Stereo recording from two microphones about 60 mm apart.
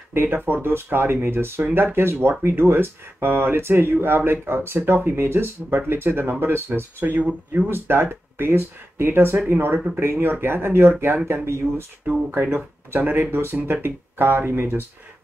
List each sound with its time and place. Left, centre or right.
0.1 s speech: right
7.2 s speech: right
7.7 s speech: right